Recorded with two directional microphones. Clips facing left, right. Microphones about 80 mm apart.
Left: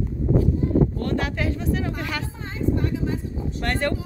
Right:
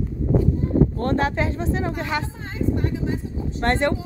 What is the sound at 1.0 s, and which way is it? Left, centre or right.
A woman's voice, right.